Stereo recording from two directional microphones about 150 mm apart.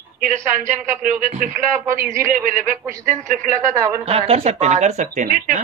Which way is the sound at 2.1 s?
20° right (ahead or behind).